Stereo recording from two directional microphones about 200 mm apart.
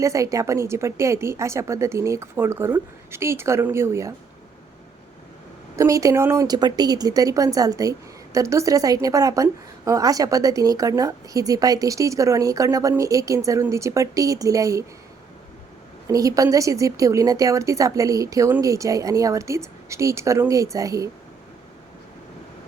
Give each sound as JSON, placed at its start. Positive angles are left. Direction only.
{"t": 0.0, "sound": "a woman's voice", "side_deg": -15}
{"t": 5.7, "sound": "a woman's voice", "side_deg": -15}
{"t": 16.0, "sound": "a woman's voice", "side_deg": -15}